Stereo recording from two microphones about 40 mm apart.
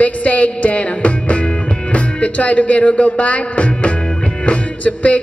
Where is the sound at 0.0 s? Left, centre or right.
Left.